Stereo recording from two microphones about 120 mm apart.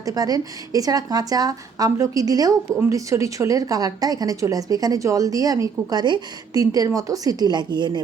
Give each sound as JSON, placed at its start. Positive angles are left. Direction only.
{"t": 0.0, "sound": "a woman's voice", "side_deg": -30}